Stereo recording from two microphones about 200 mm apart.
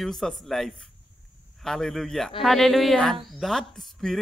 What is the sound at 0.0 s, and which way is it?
Speech, centre (ahead or behind).